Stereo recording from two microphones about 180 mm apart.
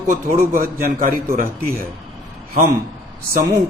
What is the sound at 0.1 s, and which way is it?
A man's voice, 50° right (ahead or behind).